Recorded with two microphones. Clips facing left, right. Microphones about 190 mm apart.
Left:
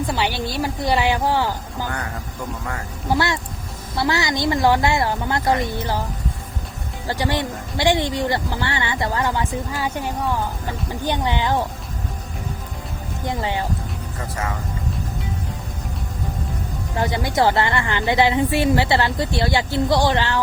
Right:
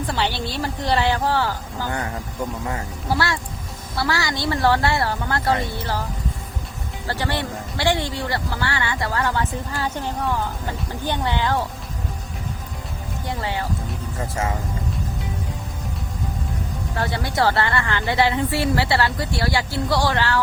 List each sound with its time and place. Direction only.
0.1 s speech: 10° left (ahead or behind)
1.9 s speech: 20° right (ahead or behind)
3.2 s a woman's voice: 20° left (ahead or behind)
7.1 s speech: 15° left (ahead or behind)
13.2 s a woman's voice: 20° left (ahead or behind)
16.9 s a woman's voice: 15° left (ahead or behind)